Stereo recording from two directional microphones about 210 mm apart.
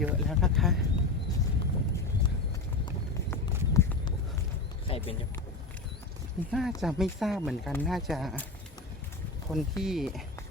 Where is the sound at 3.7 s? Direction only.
15° left (ahead or behind).